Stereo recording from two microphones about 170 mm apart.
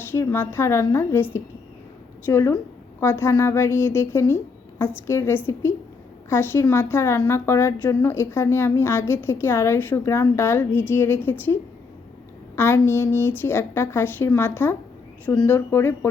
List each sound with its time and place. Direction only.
0.1 s a woman's voice: 15° left (ahead or behind)